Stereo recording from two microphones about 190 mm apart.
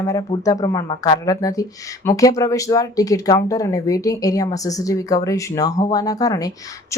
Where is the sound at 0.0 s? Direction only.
15° left (ahead or behind).